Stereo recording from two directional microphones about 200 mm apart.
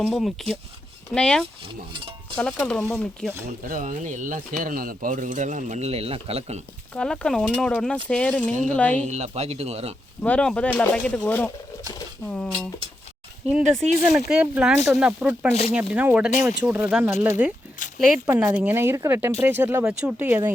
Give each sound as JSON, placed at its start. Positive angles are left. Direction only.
{"t": 0.0, "sound": "speech", "side_deg": 0}
{"t": 1.6, "sound": "speech", "side_deg": -25}
{"t": 2.4, "sound": "speech", "side_deg": 5}
{"t": 3.6, "sound": "speech", "side_deg": -40}
{"t": 6.9, "sound": "speech", "side_deg": 5}
{"t": 9.0, "sound": "speech", "side_deg": -35}
{"t": 10.2, "sound": "speech", "side_deg": 5}
{"t": 13.5, "sound": "speech", "side_deg": 0}
{"t": 17.8, "sound": "a sound", "side_deg": 40}
{"t": 18.3, "sound": "speech", "side_deg": -10}